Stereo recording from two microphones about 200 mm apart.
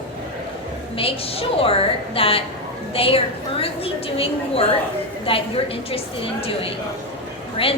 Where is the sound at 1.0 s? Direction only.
30° left (ahead or behind).